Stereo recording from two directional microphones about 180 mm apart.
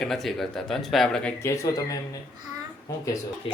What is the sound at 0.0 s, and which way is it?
Speech, centre (ahead or behind).